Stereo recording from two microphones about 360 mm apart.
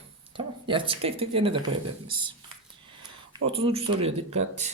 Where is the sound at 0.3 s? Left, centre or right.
Centre.